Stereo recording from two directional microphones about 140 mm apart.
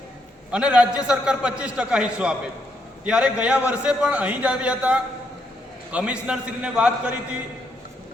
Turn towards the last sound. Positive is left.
turn(degrees=-10)  # may be behind; listen again after turning